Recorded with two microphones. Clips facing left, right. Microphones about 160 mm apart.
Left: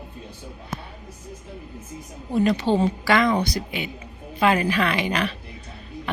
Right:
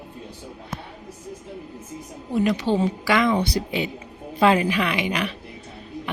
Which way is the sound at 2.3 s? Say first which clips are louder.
Left 1 dB; 15° right (ahead or behind).